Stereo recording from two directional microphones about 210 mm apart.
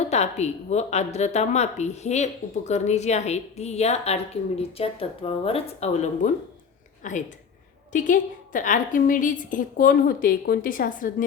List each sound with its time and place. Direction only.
0.1 s a woman's voice: 30° left (ahead or behind)